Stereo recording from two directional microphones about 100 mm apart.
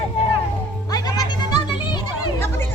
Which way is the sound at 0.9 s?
40° left (ahead or behind).